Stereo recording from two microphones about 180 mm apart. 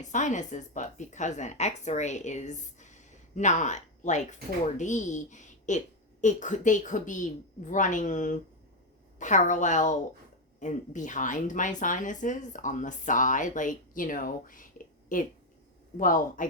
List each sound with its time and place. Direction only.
0.0 s a woman's voice: 45° left (ahead or behind)